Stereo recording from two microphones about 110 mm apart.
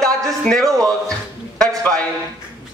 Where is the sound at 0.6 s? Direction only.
35° right (ahead or behind).